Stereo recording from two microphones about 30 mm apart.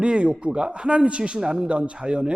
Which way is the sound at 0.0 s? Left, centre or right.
Right.